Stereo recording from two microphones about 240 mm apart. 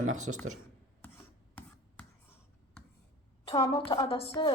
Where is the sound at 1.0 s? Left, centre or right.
Centre.